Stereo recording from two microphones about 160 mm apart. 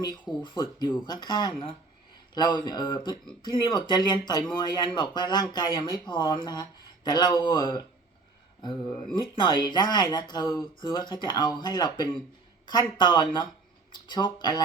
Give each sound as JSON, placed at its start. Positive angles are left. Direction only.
{"t": 0.4, "sound": "speech", "side_deg": 30}
{"t": 9.1, "sound": "speech", "side_deg": 30}